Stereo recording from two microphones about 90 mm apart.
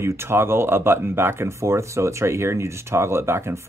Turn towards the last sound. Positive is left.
turn(degrees=-30)  # may be behind; listen again after turning